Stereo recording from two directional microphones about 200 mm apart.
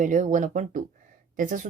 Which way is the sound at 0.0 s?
40° right (ahead or behind).